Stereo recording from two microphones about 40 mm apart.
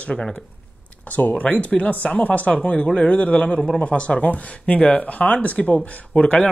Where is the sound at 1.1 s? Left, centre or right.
Left.